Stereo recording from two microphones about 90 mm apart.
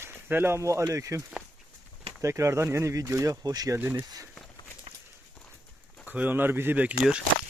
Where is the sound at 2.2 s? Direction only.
35° right (ahead or behind).